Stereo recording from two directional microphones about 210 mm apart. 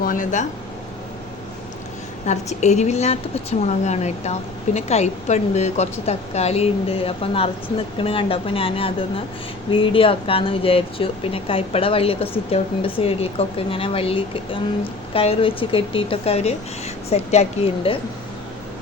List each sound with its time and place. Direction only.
0.0 s speech: 40° left (ahead or behind)
2.2 s a woman's voice: 35° left (ahead or behind)